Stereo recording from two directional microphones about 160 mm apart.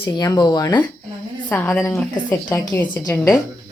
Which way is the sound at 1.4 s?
10° left (ahead or behind).